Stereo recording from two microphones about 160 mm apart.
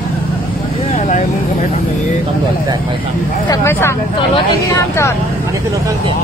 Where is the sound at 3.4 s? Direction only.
20° left (ahead or behind).